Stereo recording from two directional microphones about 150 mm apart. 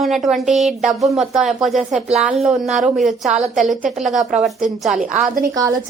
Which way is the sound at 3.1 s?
50° right (ahead or behind).